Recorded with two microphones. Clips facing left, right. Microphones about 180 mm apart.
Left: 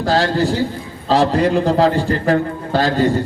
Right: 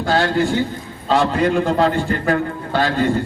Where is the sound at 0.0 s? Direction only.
35° left (ahead or behind).